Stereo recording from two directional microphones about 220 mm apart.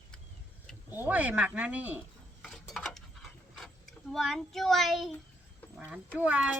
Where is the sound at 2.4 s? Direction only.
Centre (ahead or behind).